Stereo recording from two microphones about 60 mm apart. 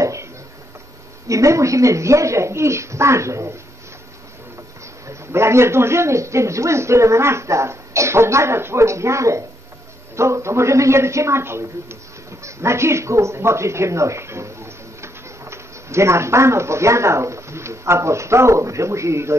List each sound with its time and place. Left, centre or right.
0.0 s a sound: right
1.2 s a woman's voice: right
5.0 s a man's voice: right